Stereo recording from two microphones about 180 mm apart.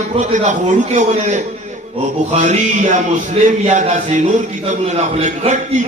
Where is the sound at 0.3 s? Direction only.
45° right (ahead or behind).